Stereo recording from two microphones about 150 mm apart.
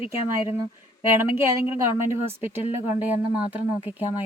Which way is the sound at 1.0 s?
15° right (ahead or behind).